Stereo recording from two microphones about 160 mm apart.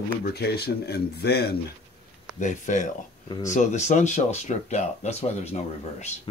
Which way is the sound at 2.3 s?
50° left (ahead or behind).